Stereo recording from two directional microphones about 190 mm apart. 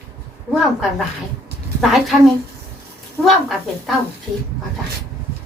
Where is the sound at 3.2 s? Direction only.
Centre (ahead or behind).